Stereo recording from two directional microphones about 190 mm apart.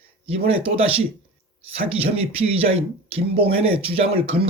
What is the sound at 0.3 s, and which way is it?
Speech, 30° right (ahead or behind).